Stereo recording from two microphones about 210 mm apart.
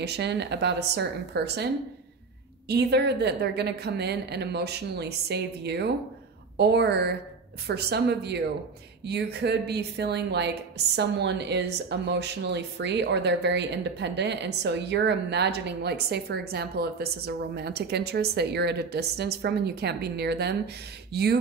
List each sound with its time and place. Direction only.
0.0 s a woman's voice: 55° right (ahead or behind)
2.7 s a woman's voice: 50° right (ahead or behind)